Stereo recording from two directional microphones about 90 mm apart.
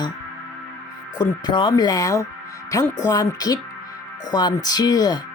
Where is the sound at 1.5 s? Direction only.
60° left (ahead or behind).